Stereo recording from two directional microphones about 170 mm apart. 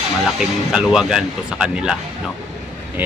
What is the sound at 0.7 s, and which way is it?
Speech, 5° right (ahead or behind).